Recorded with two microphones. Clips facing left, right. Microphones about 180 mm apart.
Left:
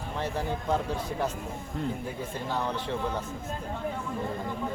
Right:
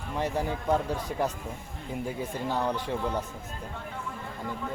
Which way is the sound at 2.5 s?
15° right (ahead or behind).